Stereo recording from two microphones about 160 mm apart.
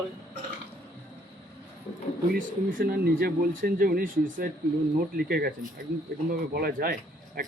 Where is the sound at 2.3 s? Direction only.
65° right (ahead or behind).